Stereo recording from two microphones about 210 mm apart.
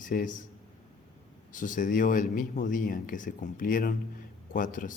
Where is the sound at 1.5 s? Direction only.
40° left (ahead or behind).